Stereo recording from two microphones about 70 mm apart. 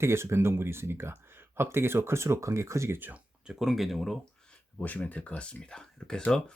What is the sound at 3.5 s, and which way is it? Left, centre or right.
Speech, centre.